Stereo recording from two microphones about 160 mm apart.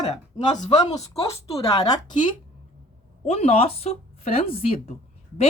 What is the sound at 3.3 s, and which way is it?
A woman's voice, 40° left (ahead or behind).